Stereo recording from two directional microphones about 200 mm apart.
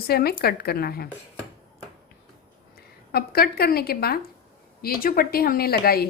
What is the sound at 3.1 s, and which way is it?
A woman's voice, 50° left (ahead or behind).